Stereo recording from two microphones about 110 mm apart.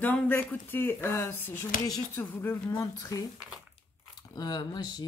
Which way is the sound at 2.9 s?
30° left (ahead or behind).